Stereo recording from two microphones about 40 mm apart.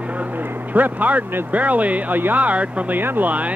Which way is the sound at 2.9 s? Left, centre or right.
Right.